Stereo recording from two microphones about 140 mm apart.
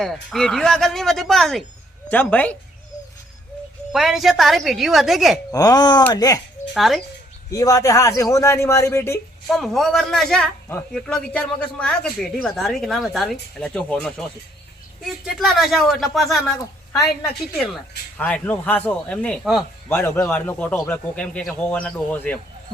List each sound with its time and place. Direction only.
0.0 s speech: 5° left (ahead or behind)
3.9 s speech: centre (ahead or behind)
5.5 s a man's voice: 25° left (ahead or behind)
6.7 s speech: centre (ahead or behind)
7.5 s a man's voice: 25° left (ahead or behind)
9.5 s speech: centre (ahead or behind)
18.2 s speech: 10° left (ahead or behind)